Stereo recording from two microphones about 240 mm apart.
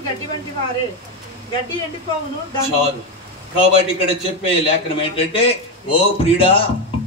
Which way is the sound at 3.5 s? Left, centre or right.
Left.